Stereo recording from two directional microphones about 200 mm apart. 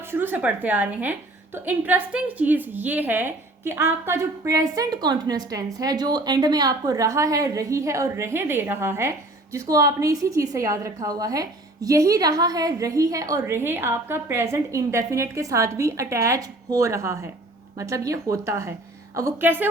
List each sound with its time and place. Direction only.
0.1 s a woman's voice: 10° right (ahead or behind)